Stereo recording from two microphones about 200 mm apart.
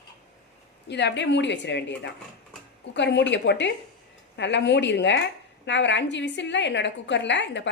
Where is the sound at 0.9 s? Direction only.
60° left (ahead or behind).